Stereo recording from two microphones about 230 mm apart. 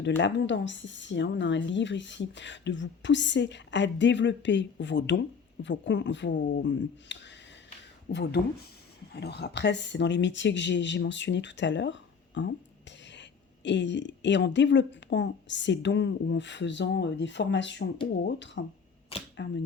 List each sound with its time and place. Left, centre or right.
0.2 s a woman's voice: left
13.7 s a woman's voice: left